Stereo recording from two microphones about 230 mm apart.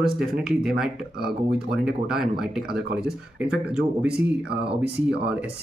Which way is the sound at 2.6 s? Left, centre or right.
Right.